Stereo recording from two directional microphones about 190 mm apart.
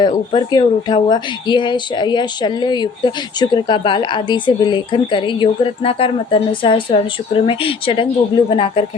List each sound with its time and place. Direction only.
0.0 s speech: 25° left (ahead or behind)